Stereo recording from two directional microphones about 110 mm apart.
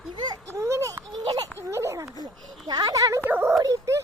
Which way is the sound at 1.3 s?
35° right (ahead or behind).